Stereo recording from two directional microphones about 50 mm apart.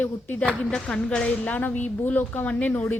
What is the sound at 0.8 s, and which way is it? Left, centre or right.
A woman's voice, centre.